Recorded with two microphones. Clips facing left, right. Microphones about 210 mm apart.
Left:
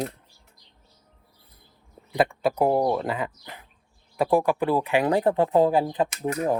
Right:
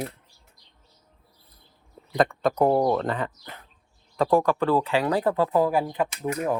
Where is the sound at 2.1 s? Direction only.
10° left (ahead or behind).